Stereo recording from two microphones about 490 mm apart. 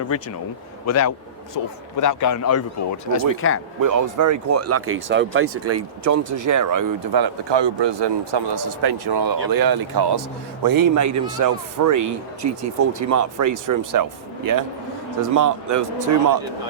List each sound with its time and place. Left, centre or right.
0.9 s a man's voice: left
3.8 s speech: right